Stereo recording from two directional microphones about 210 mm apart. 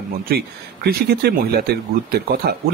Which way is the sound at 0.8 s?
45° right (ahead or behind).